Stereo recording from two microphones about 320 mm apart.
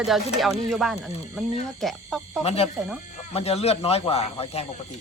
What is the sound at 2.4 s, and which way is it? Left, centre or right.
Speech, centre.